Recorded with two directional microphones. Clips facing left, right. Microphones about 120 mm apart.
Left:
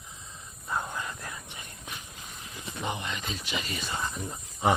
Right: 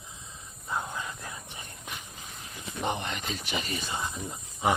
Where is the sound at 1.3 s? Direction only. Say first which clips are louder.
Even; 30° right (ahead or behind).